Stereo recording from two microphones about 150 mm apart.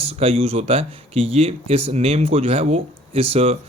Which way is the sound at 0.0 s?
40° right (ahead or behind).